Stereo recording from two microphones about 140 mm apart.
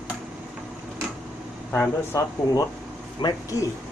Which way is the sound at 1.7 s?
20° left (ahead or behind).